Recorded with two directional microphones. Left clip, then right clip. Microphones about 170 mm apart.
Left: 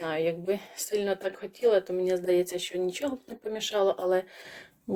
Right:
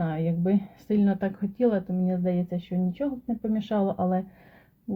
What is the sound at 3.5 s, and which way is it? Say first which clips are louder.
Speech: left 3 dB; 15° left (ahead or behind).